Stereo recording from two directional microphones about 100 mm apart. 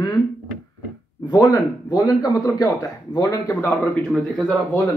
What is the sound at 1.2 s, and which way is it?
A man's voice, 45° left (ahead or behind).